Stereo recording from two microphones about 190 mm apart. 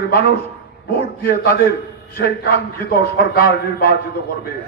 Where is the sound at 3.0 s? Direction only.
55° left (ahead or behind).